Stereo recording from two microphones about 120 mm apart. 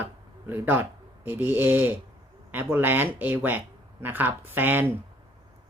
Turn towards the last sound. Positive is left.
turn(degrees=-15)  # may be behind; listen again after turning